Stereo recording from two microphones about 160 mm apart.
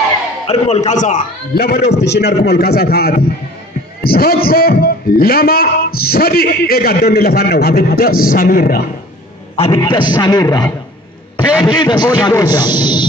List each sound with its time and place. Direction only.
0.5 s a man's voice: 40° left (ahead or behind)
1.5 s a man's voice: 70° left (ahead or behind)
9.6 s a man's voice: 35° left (ahead or behind)